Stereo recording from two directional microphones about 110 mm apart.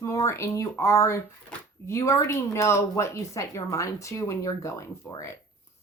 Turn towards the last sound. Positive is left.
turn(degrees=25)  # may be behind; listen again after turning